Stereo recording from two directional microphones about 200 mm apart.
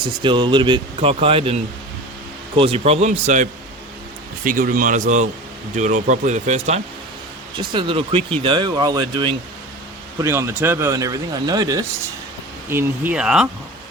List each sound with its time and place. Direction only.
0.0 s speech: 25° right (ahead or behind)
7.6 s speech: 25° right (ahead or behind); by 13.5 s 5° right (ahead or behind)